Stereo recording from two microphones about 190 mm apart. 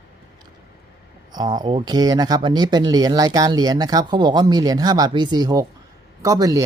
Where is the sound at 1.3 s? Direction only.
20° right (ahead or behind).